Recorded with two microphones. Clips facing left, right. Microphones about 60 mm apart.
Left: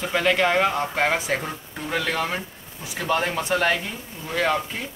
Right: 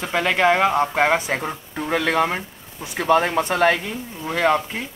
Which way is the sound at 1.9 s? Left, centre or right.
Right.